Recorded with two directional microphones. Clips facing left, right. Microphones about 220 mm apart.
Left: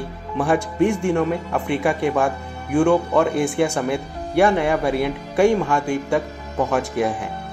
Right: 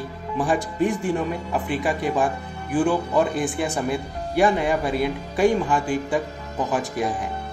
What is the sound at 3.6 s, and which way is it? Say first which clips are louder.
Speech: left 2 dB; centre (ahead or behind).